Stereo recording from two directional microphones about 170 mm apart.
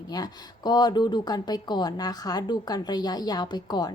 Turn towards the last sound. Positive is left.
turn(degrees=25)  # may be behind; listen again after turning